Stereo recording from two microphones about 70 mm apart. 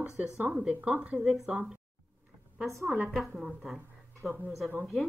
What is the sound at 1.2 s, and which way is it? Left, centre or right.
Speech, centre.